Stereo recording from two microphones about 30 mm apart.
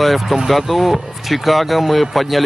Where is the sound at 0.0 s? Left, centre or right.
Centre.